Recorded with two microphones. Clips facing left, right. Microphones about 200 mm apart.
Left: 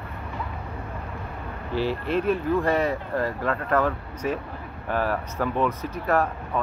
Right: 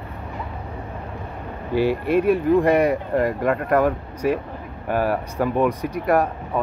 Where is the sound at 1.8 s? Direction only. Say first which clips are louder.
Right 6 dB; 10° right (ahead or behind).